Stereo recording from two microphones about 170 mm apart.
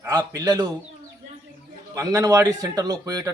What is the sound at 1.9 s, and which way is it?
Speech, 20° right (ahead or behind).